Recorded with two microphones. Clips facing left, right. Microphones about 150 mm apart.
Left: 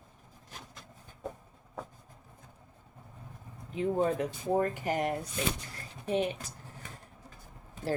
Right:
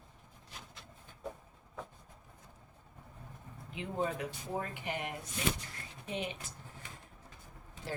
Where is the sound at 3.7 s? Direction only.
40° left (ahead or behind).